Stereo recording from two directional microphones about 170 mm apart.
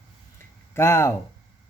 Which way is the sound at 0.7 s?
15° left (ahead or behind).